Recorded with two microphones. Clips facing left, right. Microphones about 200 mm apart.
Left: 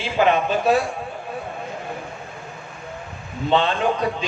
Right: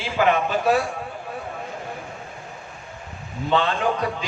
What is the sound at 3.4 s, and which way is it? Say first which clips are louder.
Speech: left 2 dB; 25° left (ahead or behind).